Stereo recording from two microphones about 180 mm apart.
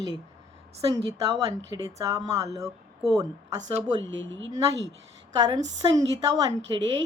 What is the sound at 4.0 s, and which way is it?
Speech, 90° right.